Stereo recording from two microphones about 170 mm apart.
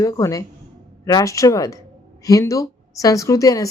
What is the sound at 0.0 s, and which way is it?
A woman's voice, 20° left (ahead or behind).